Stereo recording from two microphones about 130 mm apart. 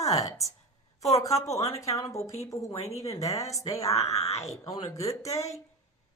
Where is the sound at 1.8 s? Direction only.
25° left (ahead or behind).